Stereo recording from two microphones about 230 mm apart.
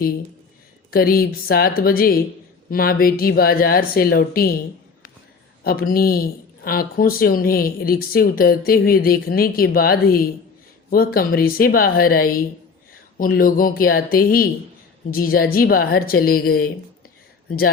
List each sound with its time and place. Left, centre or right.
0.9 s speech: left
5.6 s speech: left